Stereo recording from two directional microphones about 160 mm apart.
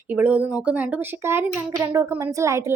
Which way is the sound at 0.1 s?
10° right (ahead or behind).